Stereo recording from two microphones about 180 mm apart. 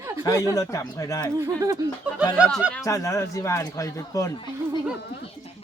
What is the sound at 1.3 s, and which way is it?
Speech, 15° right (ahead or behind).